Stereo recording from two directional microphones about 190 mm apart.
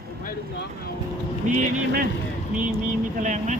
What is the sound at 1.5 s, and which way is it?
Speech, 45° right (ahead or behind).